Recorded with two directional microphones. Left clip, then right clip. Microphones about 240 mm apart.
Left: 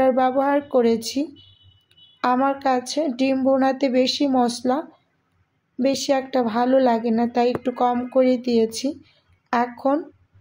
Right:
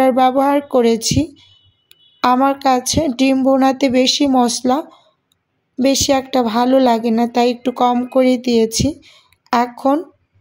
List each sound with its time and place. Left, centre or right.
0.0 s a woman's voice: right